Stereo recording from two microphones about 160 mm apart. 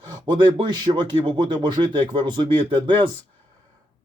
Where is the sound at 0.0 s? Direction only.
25° right (ahead or behind).